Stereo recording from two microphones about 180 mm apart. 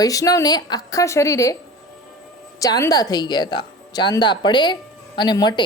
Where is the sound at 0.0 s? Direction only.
20° left (ahead or behind).